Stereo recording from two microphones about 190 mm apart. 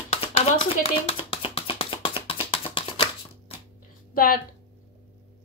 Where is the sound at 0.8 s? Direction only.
30° left (ahead or behind).